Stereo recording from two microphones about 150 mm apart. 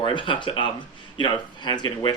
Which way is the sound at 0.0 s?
30° left (ahead or behind).